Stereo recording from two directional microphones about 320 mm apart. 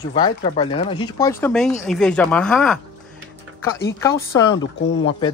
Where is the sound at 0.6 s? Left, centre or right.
Centre.